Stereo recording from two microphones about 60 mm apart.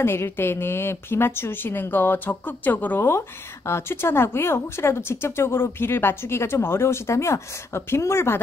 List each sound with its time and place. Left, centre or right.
0.0 s a woman's voice: left
3.1 s a woman's voice: left